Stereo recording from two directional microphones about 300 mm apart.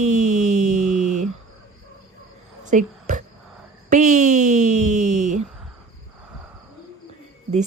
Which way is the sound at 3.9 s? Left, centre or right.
Right.